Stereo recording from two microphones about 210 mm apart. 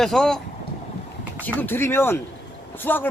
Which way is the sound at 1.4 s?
10° left (ahead or behind).